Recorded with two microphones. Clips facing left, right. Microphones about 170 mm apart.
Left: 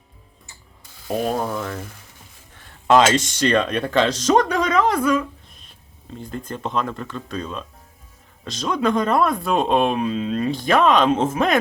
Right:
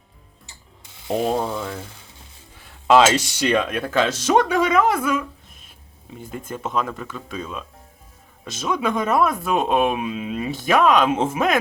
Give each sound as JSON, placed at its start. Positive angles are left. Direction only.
{"t": 0.9, "sound": "ratchet", "side_deg": -25}
{"t": 2.9, "sound": "speech", "side_deg": -5}
{"t": 6.3, "sound": "speech", "side_deg": -5}